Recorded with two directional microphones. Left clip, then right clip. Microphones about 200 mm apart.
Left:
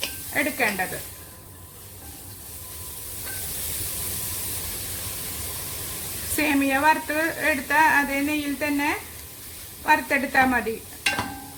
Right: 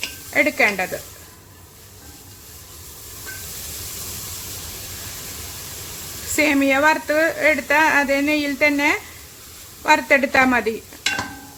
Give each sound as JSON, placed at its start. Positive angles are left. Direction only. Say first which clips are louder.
{"t": 0.3, "sound": "a woman's voice", "louder": "right 7 dB", "side_deg": -30}
{"t": 6.3, "sound": "a woman's voice", "louder": "right 5 dB", "side_deg": -30}
{"t": 9.8, "sound": "sizzle", "louder": "right 5 dB", "side_deg": -30}